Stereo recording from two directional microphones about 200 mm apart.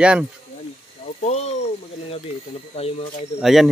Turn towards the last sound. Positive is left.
turn(degrees=0)  # may be behind; listen again after turning